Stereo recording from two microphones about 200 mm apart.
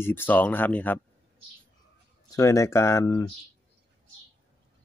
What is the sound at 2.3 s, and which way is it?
Speech, 15° left (ahead or behind).